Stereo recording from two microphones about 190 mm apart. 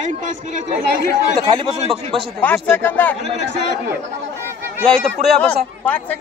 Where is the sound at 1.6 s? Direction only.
30° right (ahead or behind).